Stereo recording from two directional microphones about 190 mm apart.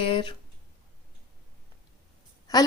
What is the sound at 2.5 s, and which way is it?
Speech, 20° left (ahead or behind).